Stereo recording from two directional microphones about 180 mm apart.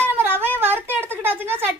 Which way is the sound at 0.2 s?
10° right (ahead or behind).